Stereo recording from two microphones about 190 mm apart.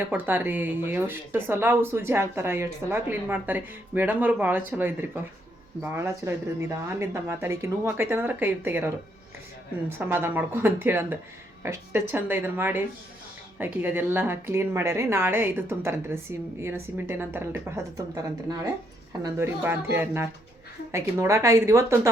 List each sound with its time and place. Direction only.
0.0 s a woman's voice: 10° right (ahead or behind)
10.0 s a woman's voice: 10° right (ahead or behind)
19.2 s a woman's voice: 15° right (ahead or behind)